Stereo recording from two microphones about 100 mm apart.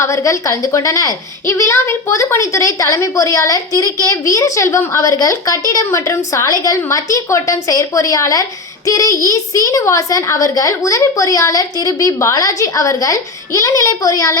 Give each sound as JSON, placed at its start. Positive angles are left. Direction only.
{"t": 0.0, "sound": "a woman's voice", "side_deg": 30}